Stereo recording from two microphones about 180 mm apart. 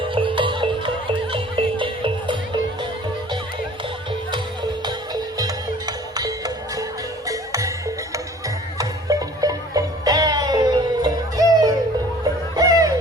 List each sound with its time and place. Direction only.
0.0 s music: 30° right (ahead or behind)
4.9 s music: 20° right (ahead or behind)